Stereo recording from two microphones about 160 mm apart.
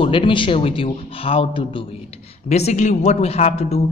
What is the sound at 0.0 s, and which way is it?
A man's voice, 30° left (ahead or behind).